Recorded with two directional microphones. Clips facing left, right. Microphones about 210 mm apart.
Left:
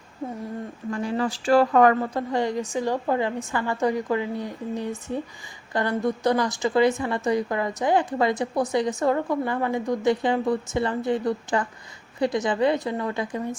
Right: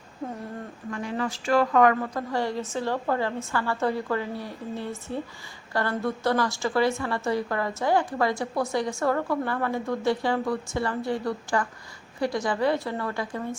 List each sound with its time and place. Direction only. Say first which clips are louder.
0.9 s a woman's voice: left 4 dB; 30° left (ahead or behind)